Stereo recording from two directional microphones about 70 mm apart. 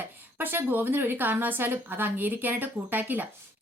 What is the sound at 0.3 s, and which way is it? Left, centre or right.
A woman's voice, right.